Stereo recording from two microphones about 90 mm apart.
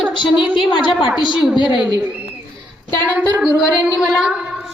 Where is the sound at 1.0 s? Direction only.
5° right (ahead or behind).